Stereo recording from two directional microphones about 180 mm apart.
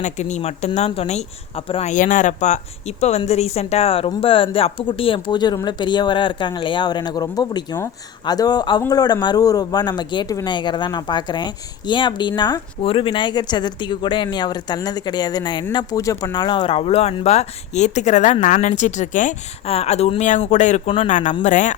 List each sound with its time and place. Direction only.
0.0 s speech: 40° left (ahead or behind)